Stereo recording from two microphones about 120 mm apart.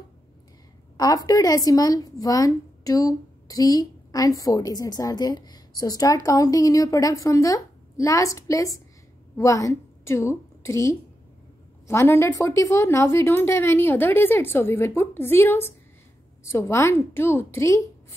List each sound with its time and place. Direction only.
0.9 s a woman's voice: 30° left (ahead or behind)